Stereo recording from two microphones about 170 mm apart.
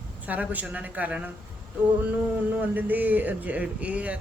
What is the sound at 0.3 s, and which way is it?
A man's voice, 10° right (ahead or behind).